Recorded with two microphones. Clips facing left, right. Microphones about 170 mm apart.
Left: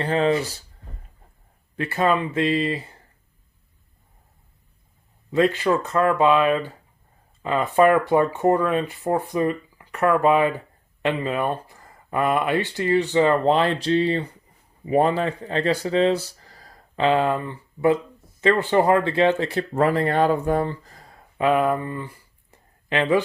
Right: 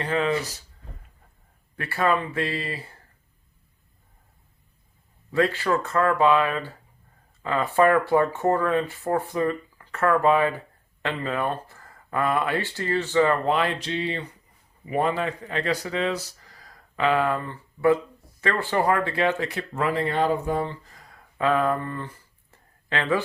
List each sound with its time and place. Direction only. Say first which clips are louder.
0.0 s speech: left 4 dB; 30° left (ahead or behind)
1.7 s speech: left 3 dB; 20° left (ahead or behind)
5.3 s speech: left 3 dB; 20° left (ahead or behind); by 20.7 s 55° left (ahead or behind)
20.8 s a sound: left 3 dB; 35° left (ahead or behind)
21.3 s speech: left 3 dB; 15° left (ahead or behind)
22.5 s a sound: left 5 dB; 20° left (ahead or behind)